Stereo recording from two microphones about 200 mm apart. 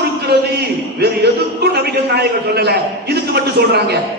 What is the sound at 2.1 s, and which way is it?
A man's voice, 55° right (ahead or behind).